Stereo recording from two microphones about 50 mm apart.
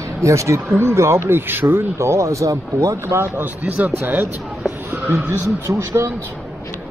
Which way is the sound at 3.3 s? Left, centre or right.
Right.